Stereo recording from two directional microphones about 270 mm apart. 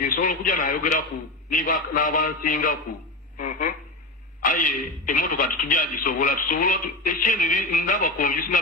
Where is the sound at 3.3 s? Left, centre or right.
Left.